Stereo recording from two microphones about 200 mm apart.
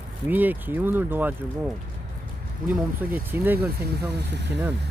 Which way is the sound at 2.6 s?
5° right (ahead or behind).